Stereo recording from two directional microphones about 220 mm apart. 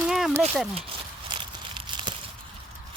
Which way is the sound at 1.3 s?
20° right (ahead or behind).